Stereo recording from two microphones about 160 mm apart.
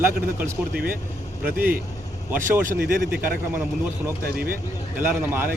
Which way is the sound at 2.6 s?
60° right (ahead or behind).